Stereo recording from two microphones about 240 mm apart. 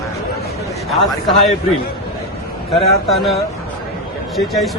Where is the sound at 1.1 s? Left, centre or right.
Centre.